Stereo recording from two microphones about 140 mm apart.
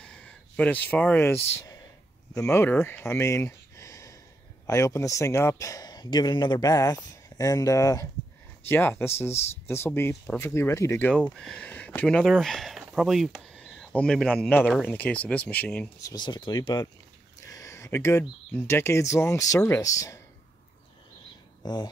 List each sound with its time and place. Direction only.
0.0 s a man's voice: 5° left (ahead or behind)
11.1 s speech: 5° left (ahead or behind)
16.0 s speech: 30° left (ahead or behind)
17.5 s a sound: 20° left (ahead or behind)
18.5 s a man's voice: 15° left (ahead or behind)
21.6 s speech: 30° left (ahead or behind)